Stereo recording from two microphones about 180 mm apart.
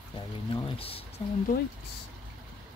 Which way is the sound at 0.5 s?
30° left (ahead or behind).